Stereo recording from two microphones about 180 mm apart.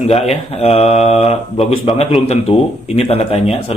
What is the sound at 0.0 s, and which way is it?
A man's voice, 35° left (ahead or behind).